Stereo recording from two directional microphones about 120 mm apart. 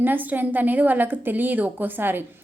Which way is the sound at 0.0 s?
15° right (ahead or behind).